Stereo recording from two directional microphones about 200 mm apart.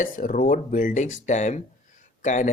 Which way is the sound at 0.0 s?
40° left (ahead or behind).